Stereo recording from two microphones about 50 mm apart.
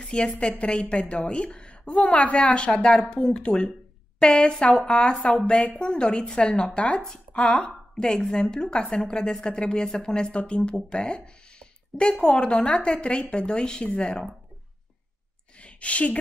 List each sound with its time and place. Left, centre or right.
0.0 s a sound: left
0.4 s speech: left
3.0 s a woman's voice: centre
15.6 s speech: left